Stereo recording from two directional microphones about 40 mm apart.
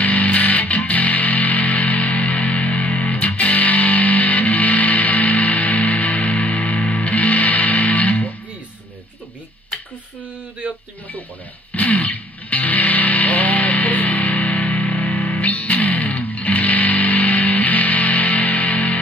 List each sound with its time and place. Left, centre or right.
0.0 s music: left
11.7 s music: left